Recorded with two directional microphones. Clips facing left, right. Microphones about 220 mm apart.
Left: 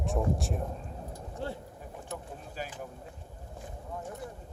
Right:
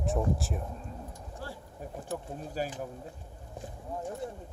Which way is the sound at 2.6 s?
40° right (ahead or behind).